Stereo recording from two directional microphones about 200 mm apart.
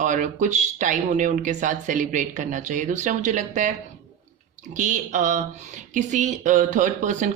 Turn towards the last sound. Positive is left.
turn(degrees=-40)  # may be behind; listen again after turning